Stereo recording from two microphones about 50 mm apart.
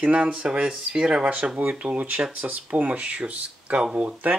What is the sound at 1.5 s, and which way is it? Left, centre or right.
Speech, right.